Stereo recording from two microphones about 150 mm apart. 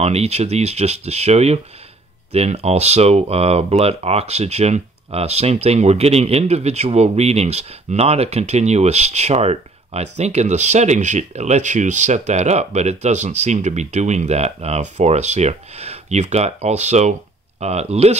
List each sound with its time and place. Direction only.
0.0 s speech: 45° right (ahead or behind)